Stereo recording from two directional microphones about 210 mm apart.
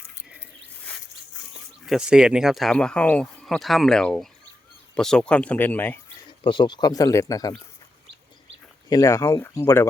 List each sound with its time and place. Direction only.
1.8 s speech: 5° right (ahead or behind)
6.4 s speech: 20° left (ahead or behind)
8.9 s speech: 15° left (ahead or behind)